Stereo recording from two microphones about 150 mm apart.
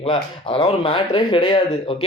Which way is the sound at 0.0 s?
35° left (ahead or behind).